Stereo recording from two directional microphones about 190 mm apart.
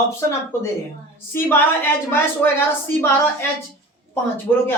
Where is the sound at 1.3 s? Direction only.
10° left (ahead or behind).